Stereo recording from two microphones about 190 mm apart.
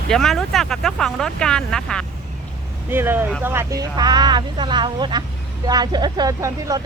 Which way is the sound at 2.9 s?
10° right (ahead or behind).